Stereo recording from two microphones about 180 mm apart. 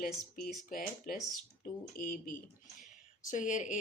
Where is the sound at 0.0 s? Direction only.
55° left (ahead or behind).